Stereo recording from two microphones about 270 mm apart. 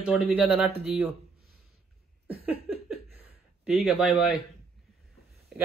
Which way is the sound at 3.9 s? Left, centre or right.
Centre.